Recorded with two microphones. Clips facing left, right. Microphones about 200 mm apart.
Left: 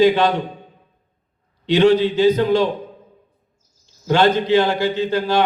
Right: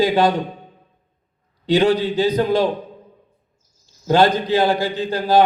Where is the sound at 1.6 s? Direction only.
35° right (ahead or behind).